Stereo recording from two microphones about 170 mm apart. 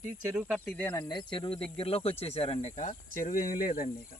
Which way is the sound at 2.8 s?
50° left (ahead or behind).